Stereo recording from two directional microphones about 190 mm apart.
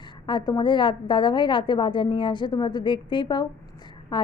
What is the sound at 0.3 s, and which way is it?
A woman's voice, 20° left (ahead or behind).